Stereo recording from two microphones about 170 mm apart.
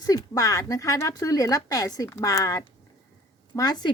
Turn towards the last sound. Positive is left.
turn(degrees=25)  # may be behind; listen again after turning